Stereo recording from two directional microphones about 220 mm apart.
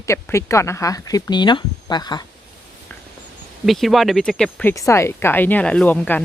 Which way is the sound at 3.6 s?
Centre (ahead or behind).